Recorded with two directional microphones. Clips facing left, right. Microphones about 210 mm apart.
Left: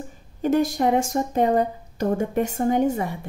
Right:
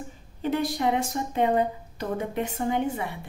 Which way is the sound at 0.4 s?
45° left (ahead or behind).